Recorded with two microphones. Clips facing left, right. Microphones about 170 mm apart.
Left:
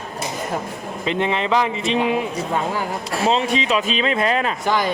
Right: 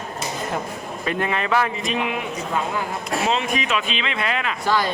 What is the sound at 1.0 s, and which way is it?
A man's voice, 20° left (ahead or behind).